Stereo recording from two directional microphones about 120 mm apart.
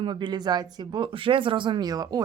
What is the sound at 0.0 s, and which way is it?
Speech, 40° right (ahead or behind).